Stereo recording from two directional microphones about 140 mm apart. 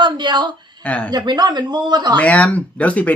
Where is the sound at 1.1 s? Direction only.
30° right (ahead or behind).